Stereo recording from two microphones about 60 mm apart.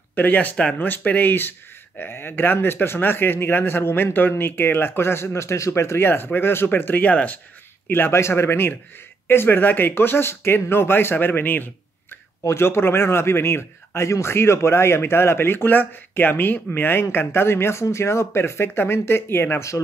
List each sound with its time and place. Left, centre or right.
0.1 s a man's voice: left
7.1 s speech: left
7.9 s a man's voice: left
12.4 s a man's voice: left